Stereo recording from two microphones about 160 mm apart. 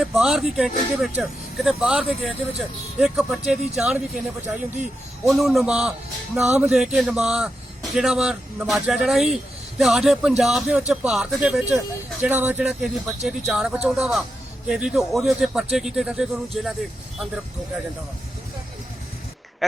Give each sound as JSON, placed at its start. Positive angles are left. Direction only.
{"t": 0.0, "sound": "a man's voice", "side_deg": 0}